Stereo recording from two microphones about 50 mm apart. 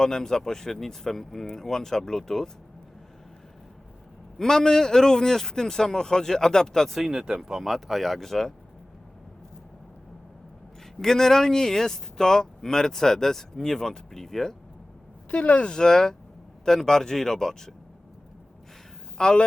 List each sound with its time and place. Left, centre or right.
0.0 s speech: centre
4.4 s speech: centre
7.1 s speech: centre
7.6 s speech: centre
11.0 s speech: centre
15.3 s speech: left; by 17.7 s centre
19.1 s speech: centre